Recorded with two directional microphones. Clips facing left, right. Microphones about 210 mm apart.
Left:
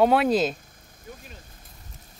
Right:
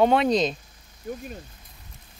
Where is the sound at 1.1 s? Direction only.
50° right (ahead or behind).